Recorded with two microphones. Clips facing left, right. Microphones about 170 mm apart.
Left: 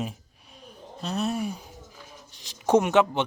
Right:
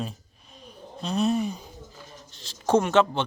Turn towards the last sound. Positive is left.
turn(degrees=15)  # may be behind; listen again after turning